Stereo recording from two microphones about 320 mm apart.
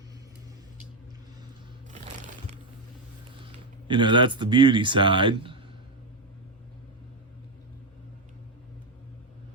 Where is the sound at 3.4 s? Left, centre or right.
Centre.